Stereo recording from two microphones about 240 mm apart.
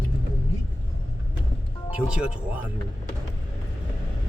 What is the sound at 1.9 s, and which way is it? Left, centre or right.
Speech, centre.